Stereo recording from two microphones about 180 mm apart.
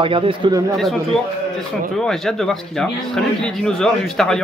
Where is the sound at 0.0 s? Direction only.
30° right (ahead or behind).